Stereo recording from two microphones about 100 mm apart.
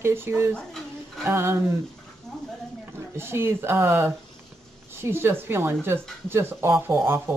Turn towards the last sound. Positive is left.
turn(degrees=-25)  # may be behind; listen again after turning